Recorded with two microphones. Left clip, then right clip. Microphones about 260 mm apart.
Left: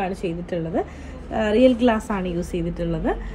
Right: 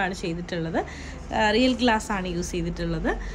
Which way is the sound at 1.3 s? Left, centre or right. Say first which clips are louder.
Left 4 dB; centre.